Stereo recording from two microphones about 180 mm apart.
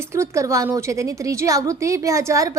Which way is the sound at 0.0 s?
15° right (ahead or behind).